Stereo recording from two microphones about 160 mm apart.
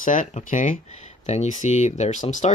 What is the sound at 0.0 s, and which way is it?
Speech, 55° left (ahead or behind).